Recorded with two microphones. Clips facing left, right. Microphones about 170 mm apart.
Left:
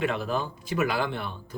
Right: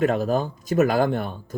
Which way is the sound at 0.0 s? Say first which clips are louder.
Right 7 dB; 40° right (ahead or behind).